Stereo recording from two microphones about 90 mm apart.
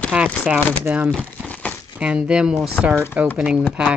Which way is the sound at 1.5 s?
15° left (ahead or behind).